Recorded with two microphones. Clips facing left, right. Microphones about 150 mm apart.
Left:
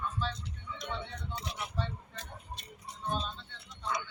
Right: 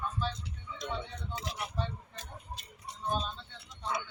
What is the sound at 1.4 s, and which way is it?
Speech, 90° right.